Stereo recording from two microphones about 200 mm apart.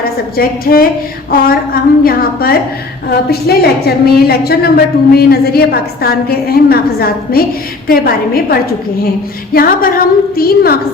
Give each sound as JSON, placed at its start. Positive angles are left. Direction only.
{"t": 0.0, "sound": "a woman's voice", "side_deg": 50}